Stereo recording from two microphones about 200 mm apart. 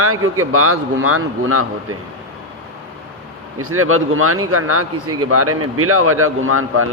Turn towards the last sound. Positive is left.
turn(degrees=-90)